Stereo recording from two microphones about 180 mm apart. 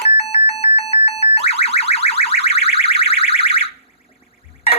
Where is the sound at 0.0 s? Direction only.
35° left (ahead or behind).